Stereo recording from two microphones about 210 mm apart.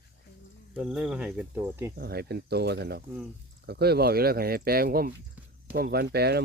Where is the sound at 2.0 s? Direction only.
50° right (ahead or behind).